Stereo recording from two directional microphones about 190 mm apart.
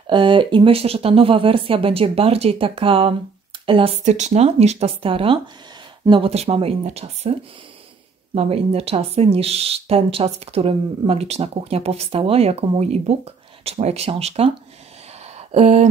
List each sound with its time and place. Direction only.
0.0 s speech: 25° right (ahead or behind)
8.4 s speech: 30° right (ahead or behind)